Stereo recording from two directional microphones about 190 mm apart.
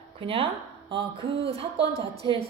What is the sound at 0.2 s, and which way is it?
Speech, 30° right (ahead or behind).